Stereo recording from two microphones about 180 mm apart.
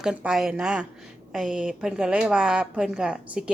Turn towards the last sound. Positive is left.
turn(degrees=-5)  # may be behind; listen again after turning